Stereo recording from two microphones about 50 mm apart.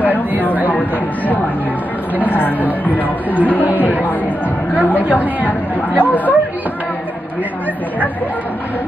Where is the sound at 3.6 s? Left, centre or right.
Right.